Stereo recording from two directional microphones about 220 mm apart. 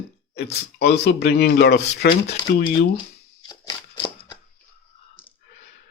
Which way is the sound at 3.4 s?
20° left (ahead or behind).